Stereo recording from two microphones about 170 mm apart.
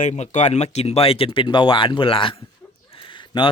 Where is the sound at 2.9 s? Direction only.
30° left (ahead or behind).